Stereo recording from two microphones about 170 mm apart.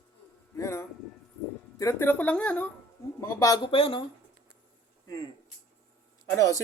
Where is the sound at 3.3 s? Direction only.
20° left (ahead or behind).